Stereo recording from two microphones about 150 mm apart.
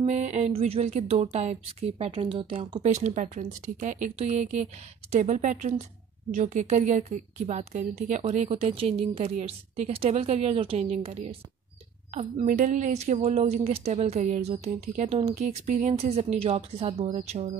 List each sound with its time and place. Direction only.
0.0 s a woman's voice: 50° right (ahead or behind)
12.1 s a woman's voice: 55° right (ahead or behind)